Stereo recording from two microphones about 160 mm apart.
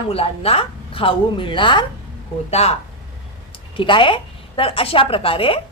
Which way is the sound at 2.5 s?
40° left (ahead or behind).